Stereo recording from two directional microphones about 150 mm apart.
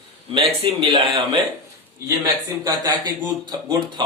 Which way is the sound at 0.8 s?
30° right (ahead or behind).